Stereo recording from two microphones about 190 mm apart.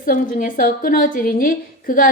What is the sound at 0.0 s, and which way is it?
A woman's voice, 45° left (ahead or behind).